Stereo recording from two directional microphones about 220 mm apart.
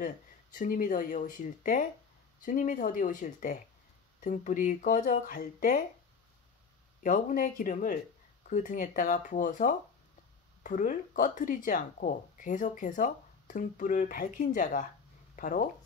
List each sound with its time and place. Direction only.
0.6 s speech: 35° left (ahead or behind)
7.0 s speech: 35° left (ahead or behind)